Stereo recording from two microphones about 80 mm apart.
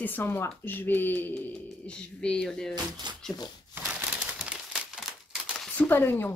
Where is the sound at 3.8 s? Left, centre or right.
Right.